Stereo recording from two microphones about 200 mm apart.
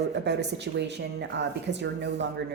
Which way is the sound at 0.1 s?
60° right (ahead or behind).